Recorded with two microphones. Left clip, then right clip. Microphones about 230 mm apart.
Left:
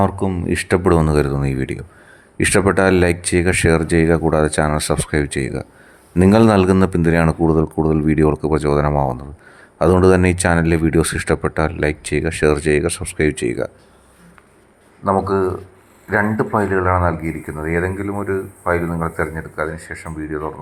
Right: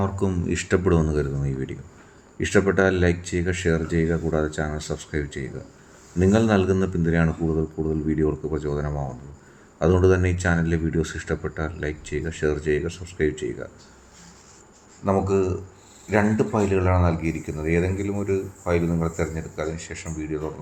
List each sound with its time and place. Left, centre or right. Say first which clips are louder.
0.2 s speech: left 4 dB; left
0.5 s speech: left 7 dB; left
15.0 s speech: left 5 dB; centre